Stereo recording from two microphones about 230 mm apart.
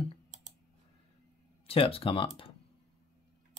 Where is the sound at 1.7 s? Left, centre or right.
Left.